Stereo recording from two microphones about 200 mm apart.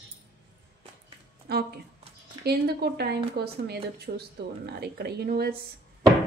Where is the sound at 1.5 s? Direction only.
50° right (ahead or behind).